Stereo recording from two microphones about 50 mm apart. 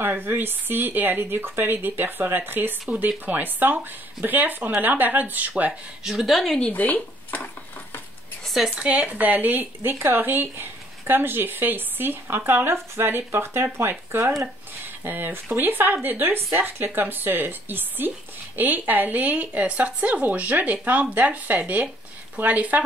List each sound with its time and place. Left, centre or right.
0.2 s speech: right
5.7 s speech: centre
6.7 s speech: left
8.7 s speech: right
9.9 s speech: right
10.2 s speech: right
15.0 s speech: right